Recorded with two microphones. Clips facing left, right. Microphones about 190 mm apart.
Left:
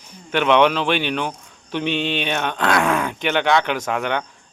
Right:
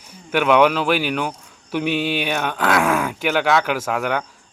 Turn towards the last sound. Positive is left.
turn(degrees=-5)  # may be behind; listen again after turning